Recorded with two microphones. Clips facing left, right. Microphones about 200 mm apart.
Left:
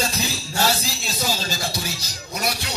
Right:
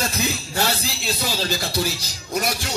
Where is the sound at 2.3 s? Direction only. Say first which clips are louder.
Right 3 dB; 55° right (ahead or behind).